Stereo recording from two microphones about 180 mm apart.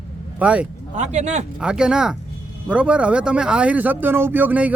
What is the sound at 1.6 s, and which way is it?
Speech, 5° right (ahead or behind).